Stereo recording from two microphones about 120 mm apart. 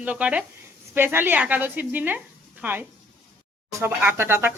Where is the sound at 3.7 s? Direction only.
25° right (ahead or behind).